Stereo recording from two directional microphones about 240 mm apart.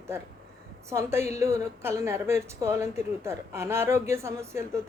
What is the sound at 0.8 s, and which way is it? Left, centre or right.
A woman's voice, centre.